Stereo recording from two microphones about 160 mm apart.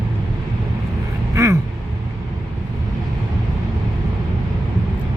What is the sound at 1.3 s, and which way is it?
Vehicle, 20° right (ahead or behind).